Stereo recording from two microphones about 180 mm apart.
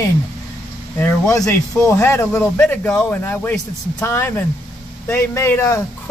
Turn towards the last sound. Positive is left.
turn(degrees=15)  # may be behind; listen again after turning